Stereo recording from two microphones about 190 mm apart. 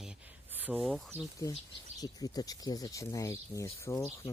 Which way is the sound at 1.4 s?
20° left (ahead or behind).